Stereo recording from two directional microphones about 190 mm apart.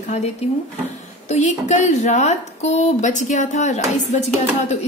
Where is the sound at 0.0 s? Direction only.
35° left (ahead or behind).